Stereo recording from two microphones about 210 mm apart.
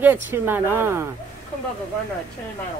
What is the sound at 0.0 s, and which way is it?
Speech, 10° right (ahead or behind).